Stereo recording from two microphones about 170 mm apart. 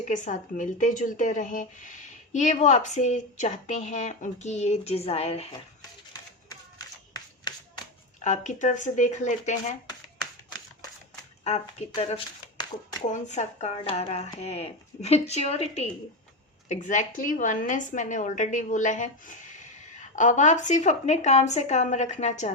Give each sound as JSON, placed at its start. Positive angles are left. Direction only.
{"t": 0.1, "sound": "speech", "side_deg": 45}
{"t": 6.5, "sound": "clapping", "side_deg": 25}
{"t": 8.2, "sound": "speech", "side_deg": 45}
{"t": 11.4, "sound": "speech", "side_deg": 40}
{"t": 13.1, "sound": "speech", "side_deg": 45}